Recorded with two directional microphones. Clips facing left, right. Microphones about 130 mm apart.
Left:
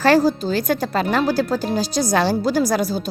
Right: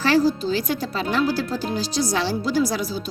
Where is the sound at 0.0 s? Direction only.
45° left (ahead or behind).